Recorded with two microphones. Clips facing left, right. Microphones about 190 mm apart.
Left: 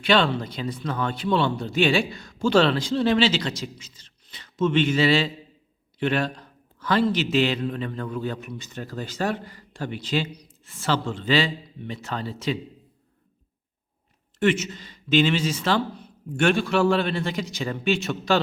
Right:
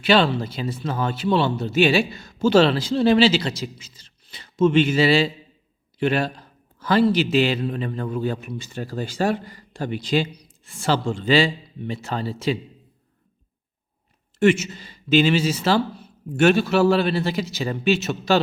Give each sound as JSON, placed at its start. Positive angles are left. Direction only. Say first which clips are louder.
{"t": 0.0, "sound": "a man's voice", "louder": "right 3 dB", "side_deg": -5}
{"t": 7.9, "sound": "a man's voice", "louder": "right 3 dB", "side_deg": -25}
{"t": 8.2, "sound": "a man's voice", "louder": "right 4 dB", "side_deg": -10}
{"t": 14.3, "sound": "a man's voice", "louder": "right 4 dB", "side_deg": -10}